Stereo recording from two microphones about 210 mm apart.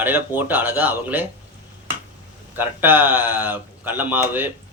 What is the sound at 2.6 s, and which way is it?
Speech, 10° right (ahead or behind).